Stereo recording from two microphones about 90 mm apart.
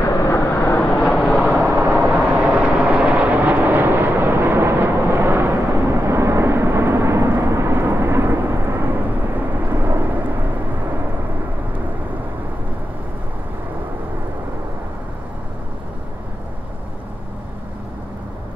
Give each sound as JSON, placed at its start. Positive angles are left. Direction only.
{"t": 0.2, "sound": "vehicle", "side_deg": 30}
{"t": 0.7, "sound": "vehicle", "side_deg": 10}
{"t": 1.5, "sound": "vehicle", "side_deg": -5}
{"t": 1.8, "sound": "vehicle", "side_deg": -15}